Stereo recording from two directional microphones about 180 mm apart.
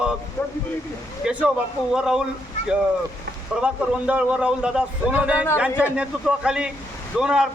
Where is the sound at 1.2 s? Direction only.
5° right (ahead or behind).